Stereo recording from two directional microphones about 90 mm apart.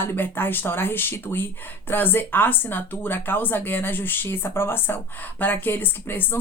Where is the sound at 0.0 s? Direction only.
25° left (ahead or behind).